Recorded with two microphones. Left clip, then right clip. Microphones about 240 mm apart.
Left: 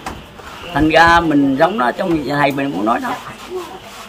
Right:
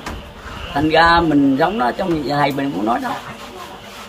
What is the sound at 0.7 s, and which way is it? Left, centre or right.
Speech, centre.